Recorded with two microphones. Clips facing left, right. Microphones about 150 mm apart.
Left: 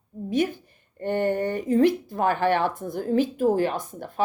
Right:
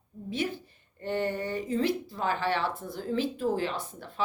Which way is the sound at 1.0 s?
50° left (ahead or behind).